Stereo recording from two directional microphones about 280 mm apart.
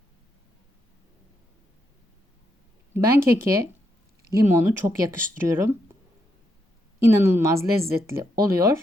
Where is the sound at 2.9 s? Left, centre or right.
Centre.